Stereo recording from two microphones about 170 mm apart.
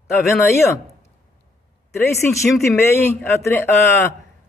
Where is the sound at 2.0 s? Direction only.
15° left (ahead or behind).